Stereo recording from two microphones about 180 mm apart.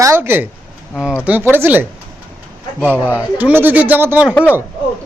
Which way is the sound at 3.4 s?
10° right (ahead or behind).